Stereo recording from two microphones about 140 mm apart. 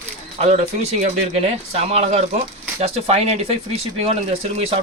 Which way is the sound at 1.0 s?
45° right (ahead or behind).